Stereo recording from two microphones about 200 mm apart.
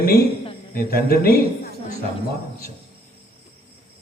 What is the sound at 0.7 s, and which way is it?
Speech, 50° left (ahead or behind).